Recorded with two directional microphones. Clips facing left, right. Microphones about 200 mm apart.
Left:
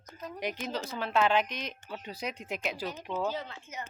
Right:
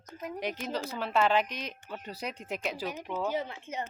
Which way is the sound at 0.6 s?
10° right (ahead or behind).